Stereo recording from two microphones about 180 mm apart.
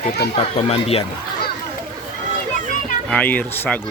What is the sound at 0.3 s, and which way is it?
Speech, 35° left (ahead or behind).